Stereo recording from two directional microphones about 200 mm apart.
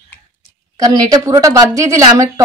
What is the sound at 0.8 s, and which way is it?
A woman's voice, 20° right (ahead or behind).